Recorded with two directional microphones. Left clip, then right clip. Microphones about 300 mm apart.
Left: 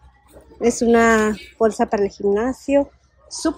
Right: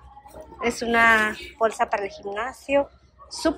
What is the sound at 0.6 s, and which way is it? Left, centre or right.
Speech, left.